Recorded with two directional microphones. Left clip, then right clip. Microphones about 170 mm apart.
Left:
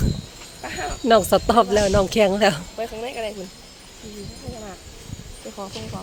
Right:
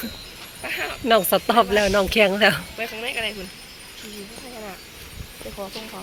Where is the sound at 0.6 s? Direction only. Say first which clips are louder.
Even; 40° left (ahead or behind); by 2.6 s 20° left (ahead or behind).